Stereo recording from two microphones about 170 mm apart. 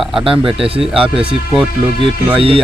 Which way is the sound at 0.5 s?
35° right (ahead or behind).